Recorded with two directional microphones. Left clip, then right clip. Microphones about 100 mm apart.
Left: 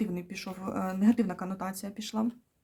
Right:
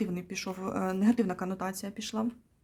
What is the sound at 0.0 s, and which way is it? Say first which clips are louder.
Speech: right 1 dB; 30° right (ahead or behind).